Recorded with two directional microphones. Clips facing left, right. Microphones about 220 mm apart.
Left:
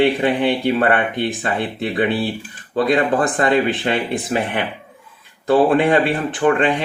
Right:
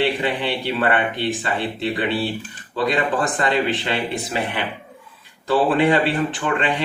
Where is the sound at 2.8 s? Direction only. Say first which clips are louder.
Left 3 dB; 50° left (ahead or behind).